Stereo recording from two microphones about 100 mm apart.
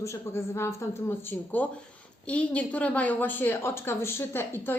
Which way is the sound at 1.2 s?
15° left (ahead or behind).